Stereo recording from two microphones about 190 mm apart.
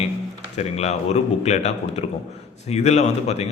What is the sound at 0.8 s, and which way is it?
Speech, 35° left (ahead or behind).